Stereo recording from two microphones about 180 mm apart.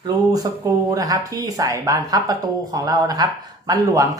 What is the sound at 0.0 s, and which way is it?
Speech, 20° right (ahead or behind).